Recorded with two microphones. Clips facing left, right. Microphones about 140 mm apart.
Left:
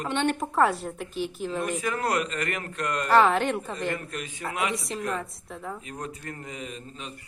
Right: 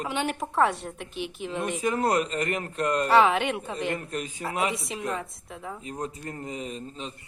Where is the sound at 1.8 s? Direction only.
30° right (ahead or behind).